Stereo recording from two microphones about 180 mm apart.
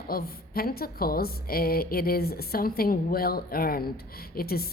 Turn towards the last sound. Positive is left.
turn(degrees=55)  # may be behind; listen again after turning